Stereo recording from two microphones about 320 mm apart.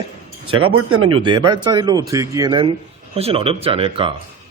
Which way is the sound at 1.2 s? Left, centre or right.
Centre.